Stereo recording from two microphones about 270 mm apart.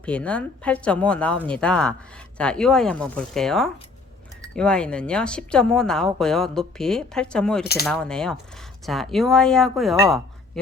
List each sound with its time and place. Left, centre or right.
0.0 s a woman's voice: centre
7.6 s speech: left
7.9 s a woman's voice: centre